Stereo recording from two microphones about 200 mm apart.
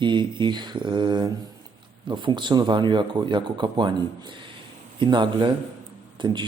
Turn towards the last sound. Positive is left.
turn(degrees=-25)  # may be behind; listen again after turning